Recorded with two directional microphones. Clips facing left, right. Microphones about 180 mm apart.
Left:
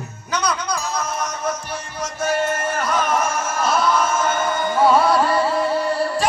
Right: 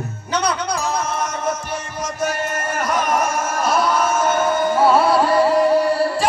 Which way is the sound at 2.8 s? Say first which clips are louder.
Right 2 dB; 15° right (ahead or behind).